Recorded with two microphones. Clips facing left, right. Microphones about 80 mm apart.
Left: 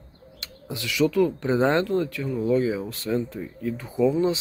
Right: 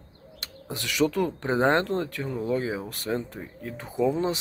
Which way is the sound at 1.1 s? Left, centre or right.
Right.